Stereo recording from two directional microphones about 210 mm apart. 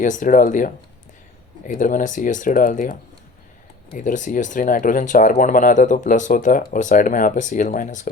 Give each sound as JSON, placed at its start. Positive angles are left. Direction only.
{"t": 0.0, "sound": "speech", "side_deg": 40}